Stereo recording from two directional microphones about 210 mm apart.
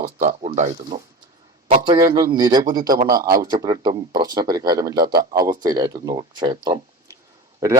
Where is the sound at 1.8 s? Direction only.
20° right (ahead or behind).